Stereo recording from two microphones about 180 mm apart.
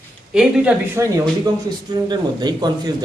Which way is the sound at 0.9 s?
15° right (ahead or behind).